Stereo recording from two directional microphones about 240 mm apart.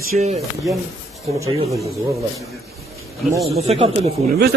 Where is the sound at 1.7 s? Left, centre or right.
Centre.